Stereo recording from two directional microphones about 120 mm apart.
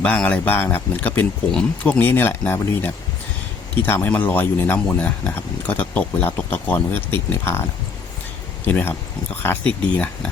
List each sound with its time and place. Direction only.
0.0 s speech: 10° left (ahead or behind)
8.6 s speech: 15° left (ahead or behind)